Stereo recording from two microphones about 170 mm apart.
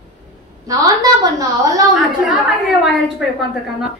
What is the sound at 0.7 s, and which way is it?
A woman's voice, 20° right (ahead or behind).